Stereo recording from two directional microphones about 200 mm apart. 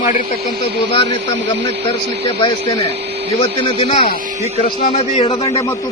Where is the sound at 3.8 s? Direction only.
30° left (ahead or behind).